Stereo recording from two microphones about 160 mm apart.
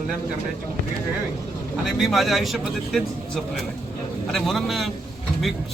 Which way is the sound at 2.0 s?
Centre (ahead or behind).